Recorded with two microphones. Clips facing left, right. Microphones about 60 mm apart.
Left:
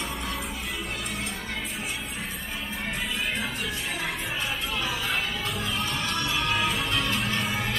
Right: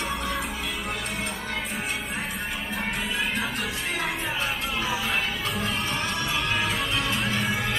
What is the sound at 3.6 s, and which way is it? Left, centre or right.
Music, right.